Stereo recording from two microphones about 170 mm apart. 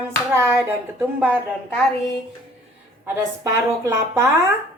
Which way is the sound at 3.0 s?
15° right (ahead or behind).